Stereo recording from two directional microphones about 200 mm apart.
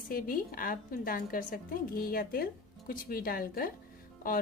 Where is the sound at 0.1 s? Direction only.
45° left (ahead or behind).